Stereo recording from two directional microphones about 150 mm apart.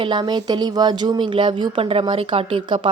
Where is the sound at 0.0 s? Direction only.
30° right (ahead or behind).